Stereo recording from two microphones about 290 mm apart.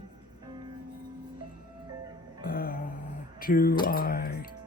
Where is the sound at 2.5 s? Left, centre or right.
Left.